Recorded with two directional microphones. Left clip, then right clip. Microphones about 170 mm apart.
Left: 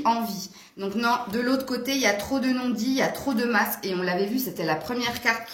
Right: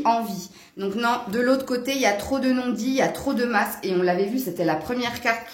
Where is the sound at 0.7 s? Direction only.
50° right (ahead or behind).